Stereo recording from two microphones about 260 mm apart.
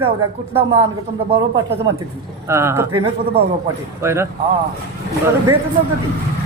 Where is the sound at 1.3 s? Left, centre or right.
Right.